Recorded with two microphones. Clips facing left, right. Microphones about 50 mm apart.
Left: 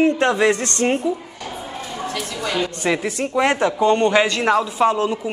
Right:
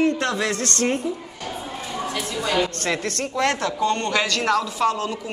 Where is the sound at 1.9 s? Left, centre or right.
Centre.